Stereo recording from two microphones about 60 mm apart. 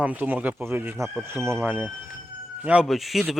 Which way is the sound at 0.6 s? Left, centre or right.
Right.